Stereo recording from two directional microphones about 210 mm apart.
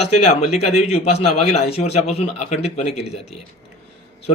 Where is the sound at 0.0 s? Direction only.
30° left (ahead or behind).